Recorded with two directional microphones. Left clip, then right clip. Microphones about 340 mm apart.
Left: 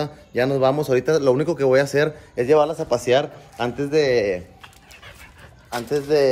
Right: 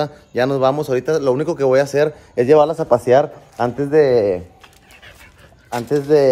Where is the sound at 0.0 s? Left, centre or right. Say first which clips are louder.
Right 4 dB; centre.